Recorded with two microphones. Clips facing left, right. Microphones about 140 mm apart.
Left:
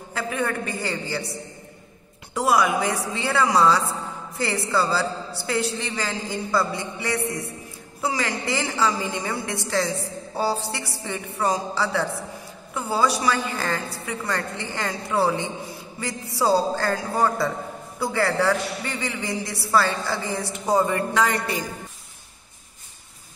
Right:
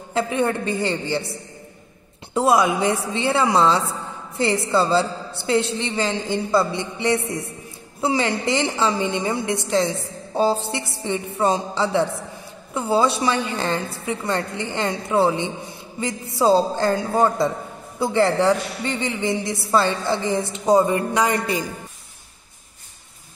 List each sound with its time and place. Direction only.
0.1 s a man's voice: 25° right (ahead or behind)